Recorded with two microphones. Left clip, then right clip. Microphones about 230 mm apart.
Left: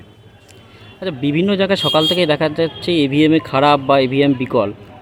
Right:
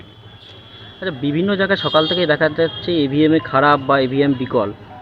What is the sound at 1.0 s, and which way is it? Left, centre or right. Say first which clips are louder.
Speech: left 2 dB; left.